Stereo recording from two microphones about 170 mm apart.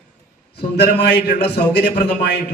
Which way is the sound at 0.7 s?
85° left.